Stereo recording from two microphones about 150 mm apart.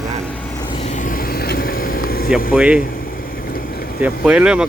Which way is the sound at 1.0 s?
70° left (ahead or behind).